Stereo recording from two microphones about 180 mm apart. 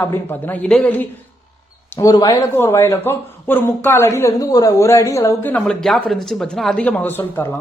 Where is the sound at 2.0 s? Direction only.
20° left (ahead or behind).